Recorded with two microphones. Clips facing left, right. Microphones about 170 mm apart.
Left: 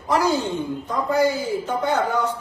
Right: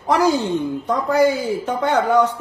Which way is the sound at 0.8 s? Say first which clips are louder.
Right 3 dB; 80° right.